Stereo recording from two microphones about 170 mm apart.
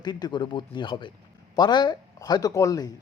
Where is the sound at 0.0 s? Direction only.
25° left (ahead or behind).